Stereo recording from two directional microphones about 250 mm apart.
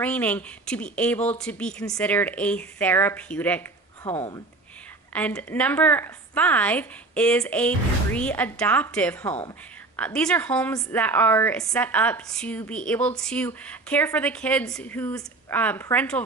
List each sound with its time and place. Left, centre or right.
0.0 s a woman's voice: centre
4.1 s speech: left
5.1 s a woman's voice: centre